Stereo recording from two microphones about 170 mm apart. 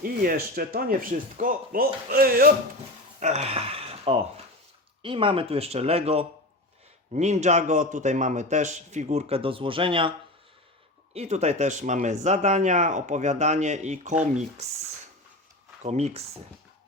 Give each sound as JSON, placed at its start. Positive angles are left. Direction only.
{"t": 0.0, "sound": "speech", "side_deg": -60}
{"t": 3.2, "sound": "speech", "side_deg": -40}
{"t": 11.1, "sound": "speech", "side_deg": -40}
{"t": 15.8, "sound": "speech", "side_deg": -40}